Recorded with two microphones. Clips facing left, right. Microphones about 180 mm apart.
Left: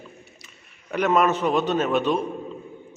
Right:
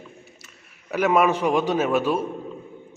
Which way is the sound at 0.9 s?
10° right (ahead or behind).